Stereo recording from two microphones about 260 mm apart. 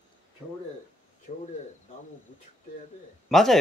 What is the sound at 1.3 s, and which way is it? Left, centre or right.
Speech, left.